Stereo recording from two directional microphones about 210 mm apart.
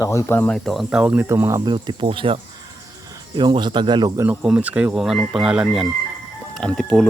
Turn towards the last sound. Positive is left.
turn(degrees=0)  # may be behind; listen again after turning